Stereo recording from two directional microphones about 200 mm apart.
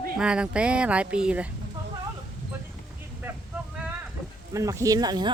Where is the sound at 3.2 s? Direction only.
10° right (ahead or behind).